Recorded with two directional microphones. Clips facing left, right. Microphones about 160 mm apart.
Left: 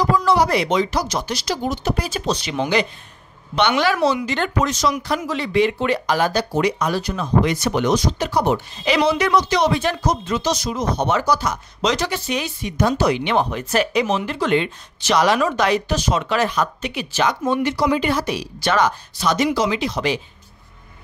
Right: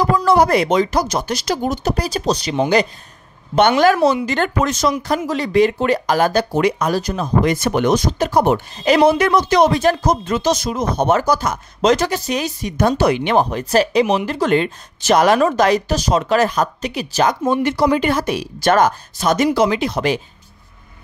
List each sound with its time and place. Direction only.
0.0 s speech: 50° right (ahead or behind)